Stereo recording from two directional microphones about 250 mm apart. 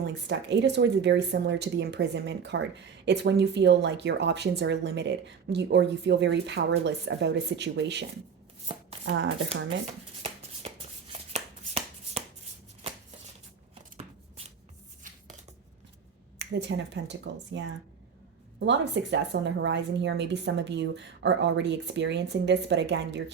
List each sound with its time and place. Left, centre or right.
0.0 s speech: right
9.0 s speech: right
10.6 s a sound: right
11.1 s shuffling cards: right
13.9 s a sound: right
15.1 s dishes: right
16.4 s speech: right